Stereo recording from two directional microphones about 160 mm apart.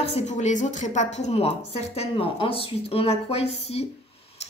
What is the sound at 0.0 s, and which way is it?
A woman's voice, 40° left (ahead or behind).